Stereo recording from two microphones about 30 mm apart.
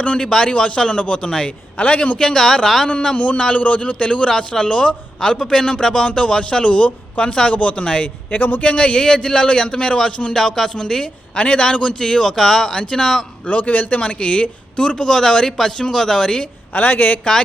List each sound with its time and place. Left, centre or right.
0.2 s speech: left
0.4 s a man's voice: left
1.8 s a man's voice: left
2.1 s speech: left
3.2 s a man's voice: left
8.3 s a man's voice: left
8.6 s a man's voice: left
9.0 s a man's voice: left
10.3 s speech: centre
11.0 s a woman's voice: left
11.9 s speech: left
13.5 s a man's voice: left
14.0 s a man's voice: left
16.7 s a man's voice: left